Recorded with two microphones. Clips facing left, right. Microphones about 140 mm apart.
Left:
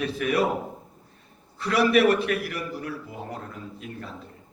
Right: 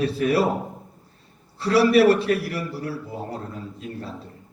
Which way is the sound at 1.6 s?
30° right (ahead or behind).